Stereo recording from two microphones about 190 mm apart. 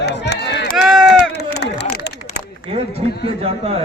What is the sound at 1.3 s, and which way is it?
Chop, 65° left (ahead or behind).